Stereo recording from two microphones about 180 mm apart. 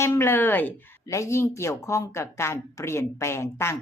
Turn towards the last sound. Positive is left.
turn(degrees=15)  # may be behind; listen again after turning